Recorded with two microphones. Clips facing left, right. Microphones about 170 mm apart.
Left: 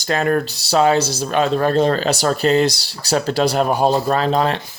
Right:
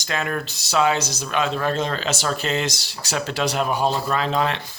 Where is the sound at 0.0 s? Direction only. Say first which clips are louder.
Left 8 dB; 40° left (ahead or behind).